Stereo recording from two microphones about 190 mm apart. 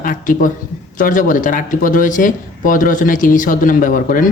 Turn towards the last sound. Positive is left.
turn(degrees=45)  # may be behind; listen again after turning